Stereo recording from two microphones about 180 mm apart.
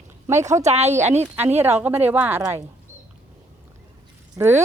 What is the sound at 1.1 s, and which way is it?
Speech, 10° right (ahead or behind).